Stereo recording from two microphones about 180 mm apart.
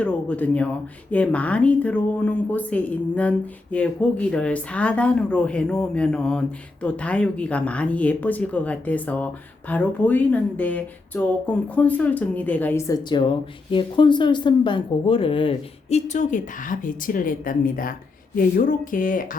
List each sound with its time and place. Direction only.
0.0 s a woman's voice: 10° left (ahead or behind); by 19.4 s 50° left (ahead or behind)